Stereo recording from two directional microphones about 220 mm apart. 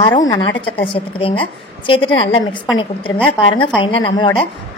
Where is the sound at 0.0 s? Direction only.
20° left (ahead or behind).